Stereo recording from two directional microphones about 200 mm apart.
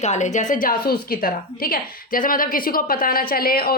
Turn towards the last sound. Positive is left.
turn(degrees=50)  # may be behind; listen again after turning